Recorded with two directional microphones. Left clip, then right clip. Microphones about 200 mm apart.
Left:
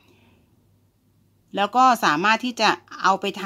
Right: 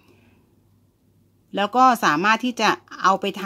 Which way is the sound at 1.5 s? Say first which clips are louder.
Even; 5° right (ahead or behind).